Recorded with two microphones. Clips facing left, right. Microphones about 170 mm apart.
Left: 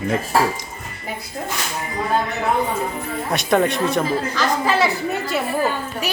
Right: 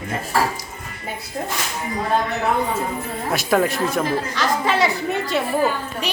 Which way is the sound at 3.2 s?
Centre (ahead or behind).